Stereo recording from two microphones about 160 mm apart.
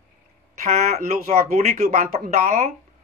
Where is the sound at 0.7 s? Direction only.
45° right (ahead or behind).